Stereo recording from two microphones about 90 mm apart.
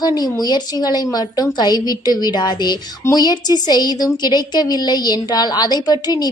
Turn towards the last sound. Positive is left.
turn(degrees=50)  # may be behind; listen again after turning